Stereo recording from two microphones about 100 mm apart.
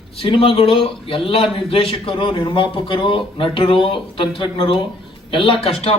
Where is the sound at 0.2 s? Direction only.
70° left (ahead or behind).